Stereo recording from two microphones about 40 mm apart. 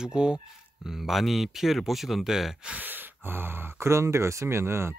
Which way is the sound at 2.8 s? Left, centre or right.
Right.